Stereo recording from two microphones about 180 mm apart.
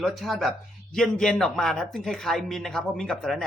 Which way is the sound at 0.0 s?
Centre (ahead or behind).